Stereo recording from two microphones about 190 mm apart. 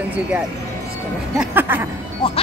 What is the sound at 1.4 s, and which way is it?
Speech, 10° right (ahead or behind).